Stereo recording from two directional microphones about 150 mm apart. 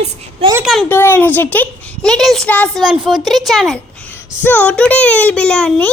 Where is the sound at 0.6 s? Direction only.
Centre (ahead or behind).